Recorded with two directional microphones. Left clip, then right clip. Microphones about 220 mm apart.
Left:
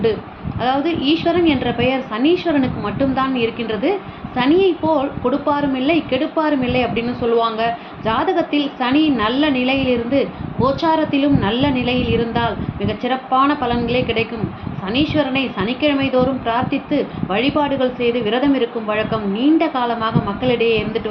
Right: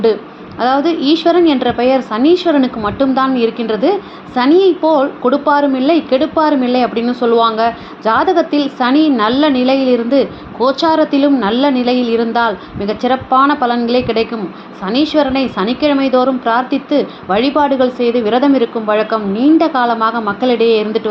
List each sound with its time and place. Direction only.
0.6 s a woman's voice: 30° right (ahead or behind)